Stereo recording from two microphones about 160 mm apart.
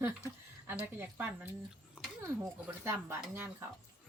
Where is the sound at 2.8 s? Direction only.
15° right (ahead or behind).